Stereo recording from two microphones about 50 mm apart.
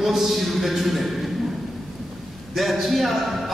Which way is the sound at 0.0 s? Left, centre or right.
Centre.